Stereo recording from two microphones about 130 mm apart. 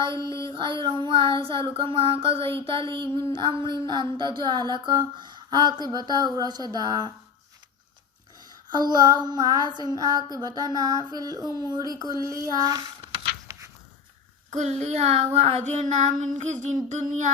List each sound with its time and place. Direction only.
0.3 s a sound: 25° left (ahead or behind)
0.5 s child singing: 40° right (ahead or behind)
3.3 s speech: 40° right (ahead or behind)
8.7 s speech: 30° right (ahead or behind)
14.5 s child singing: 65° right (ahead or behind)